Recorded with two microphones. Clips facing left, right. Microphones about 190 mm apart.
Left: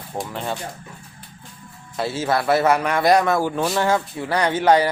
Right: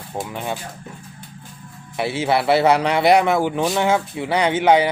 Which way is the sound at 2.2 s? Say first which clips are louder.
Right 2 dB; 15° right (ahead or behind).